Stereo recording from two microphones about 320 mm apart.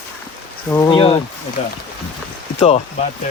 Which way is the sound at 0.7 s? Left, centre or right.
Centre.